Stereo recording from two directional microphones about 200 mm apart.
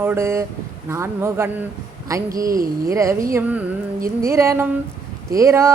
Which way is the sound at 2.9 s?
15° right (ahead or behind).